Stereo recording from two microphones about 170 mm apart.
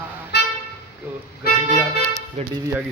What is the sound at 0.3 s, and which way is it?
Toot, 70° left (ahead or behind).